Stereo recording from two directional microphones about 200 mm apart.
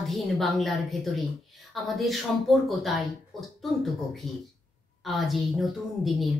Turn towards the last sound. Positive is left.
turn(degrees=0)  # may be behind; listen again after turning